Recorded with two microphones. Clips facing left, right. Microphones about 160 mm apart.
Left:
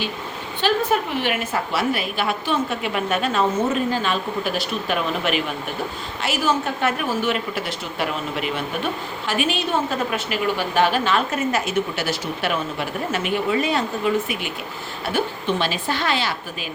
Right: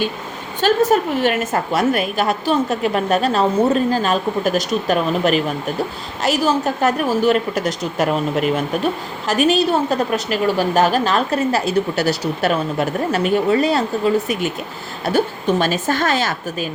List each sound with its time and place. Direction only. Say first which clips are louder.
0.6 s a woman's voice: right 5 dB; 45° right (ahead or behind)